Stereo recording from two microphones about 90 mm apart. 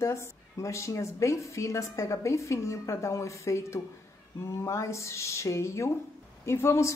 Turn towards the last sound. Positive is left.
turn(degrees=30)  # may be behind; listen again after turning